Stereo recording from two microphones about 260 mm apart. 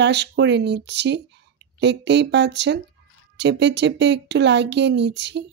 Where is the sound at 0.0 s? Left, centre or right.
Right.